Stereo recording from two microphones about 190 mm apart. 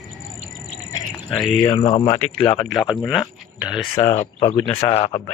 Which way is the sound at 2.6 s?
Centre (ahead or behind).